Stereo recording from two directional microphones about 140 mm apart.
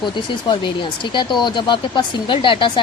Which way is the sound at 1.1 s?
35° left (ahead or behind).